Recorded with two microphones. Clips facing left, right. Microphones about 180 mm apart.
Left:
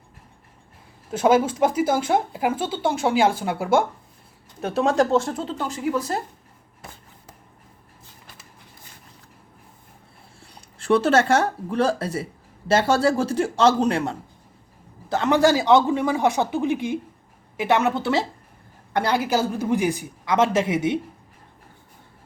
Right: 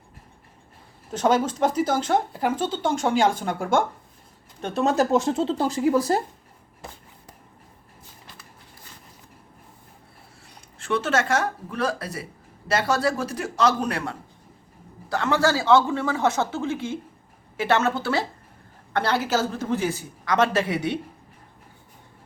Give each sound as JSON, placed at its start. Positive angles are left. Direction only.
{"t": 1.1, "sound": "speech", "side_deg": 10}
{"t": 5.1, "sound": "speech", "side_deg": -20}
{"t": 5.4, "sound": "speech", "side_deg": -30}
{"t": 10.8, "sound": "a man's voice", "side_deg": 35}